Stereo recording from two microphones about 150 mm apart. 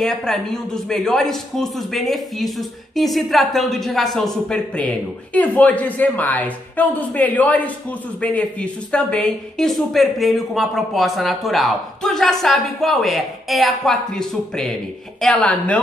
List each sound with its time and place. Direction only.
0.0 s a woman's voice: 5° left (ahead or behind)